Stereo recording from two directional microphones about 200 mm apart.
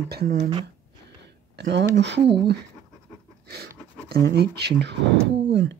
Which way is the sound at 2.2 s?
25° right (ahead or behind).